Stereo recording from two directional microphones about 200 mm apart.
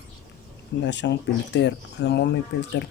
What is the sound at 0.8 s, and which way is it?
Speech, 60° left (ahead or behind).